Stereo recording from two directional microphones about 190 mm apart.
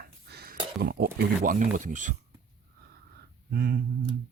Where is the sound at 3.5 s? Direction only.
55° right (ahead or behind).